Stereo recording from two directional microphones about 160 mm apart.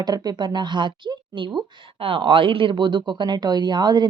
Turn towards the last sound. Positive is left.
turn(degrees=-30)  # may be behind; listen again after turning